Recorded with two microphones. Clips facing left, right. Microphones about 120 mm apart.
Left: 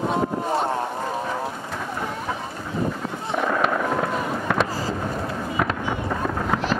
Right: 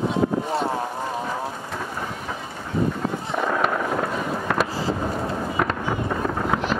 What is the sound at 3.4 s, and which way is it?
Fireworks, centre (ahead or behind).